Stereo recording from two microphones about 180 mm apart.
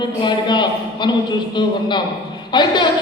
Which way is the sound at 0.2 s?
25° left (ahead or behind).